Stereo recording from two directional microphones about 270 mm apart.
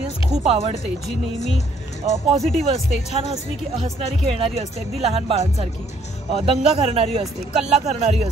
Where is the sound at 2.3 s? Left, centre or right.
Centre.